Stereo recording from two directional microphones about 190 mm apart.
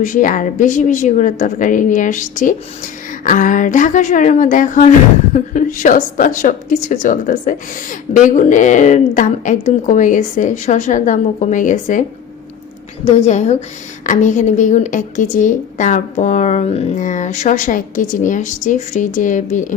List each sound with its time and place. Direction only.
0.0 s a woman's voice: 45° left (ahead or behind)
13.1 s a woman's voice: 35° left (ahead or behind)